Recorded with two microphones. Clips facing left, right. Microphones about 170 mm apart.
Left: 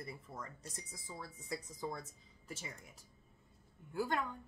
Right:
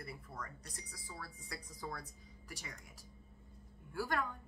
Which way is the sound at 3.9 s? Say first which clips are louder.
Left 1 dB; 20° left (ahead or behind).